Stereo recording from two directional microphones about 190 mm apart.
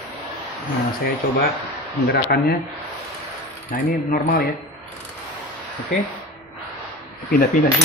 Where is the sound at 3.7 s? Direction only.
40° left (ahead or behind).